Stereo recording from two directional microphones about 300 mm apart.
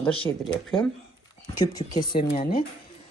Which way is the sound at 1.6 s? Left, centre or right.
Centre.